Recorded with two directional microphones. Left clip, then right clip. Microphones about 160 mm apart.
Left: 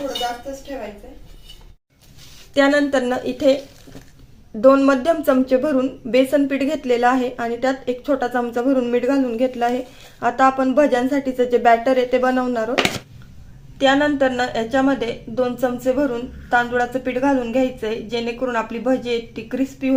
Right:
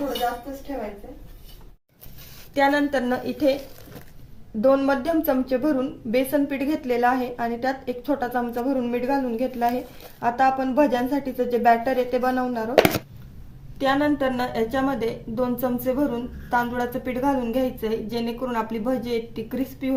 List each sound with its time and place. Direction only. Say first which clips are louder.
2.6 s a woman's voice: left 4 dB; 55° left (ahead or behind)
4.6 s a woman's voice: left 6 dB; 50° left (ahead or behind)
13.7 s a woman's voice: left 5 dB; 40° left (ahead or behind)